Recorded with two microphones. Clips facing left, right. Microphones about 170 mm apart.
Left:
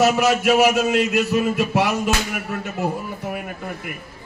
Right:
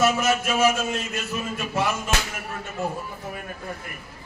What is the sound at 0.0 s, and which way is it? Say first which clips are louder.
A man's voice: left 5 dB; 75° left (ahead or behind).